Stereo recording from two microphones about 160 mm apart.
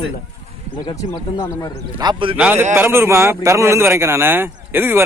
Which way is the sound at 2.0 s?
30° right (ahead or behind).